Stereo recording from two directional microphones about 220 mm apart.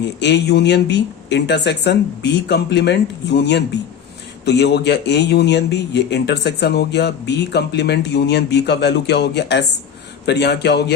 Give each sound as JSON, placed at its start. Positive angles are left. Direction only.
{"t": 0.2, "sound": "speech", "side_deg": 50}